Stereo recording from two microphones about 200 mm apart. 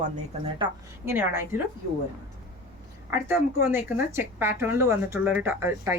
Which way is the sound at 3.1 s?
10° right (ahead or behind).